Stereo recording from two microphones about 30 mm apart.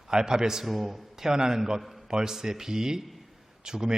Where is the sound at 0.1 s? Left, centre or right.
Right.